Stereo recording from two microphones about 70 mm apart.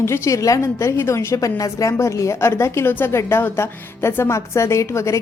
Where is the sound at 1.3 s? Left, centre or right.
Left.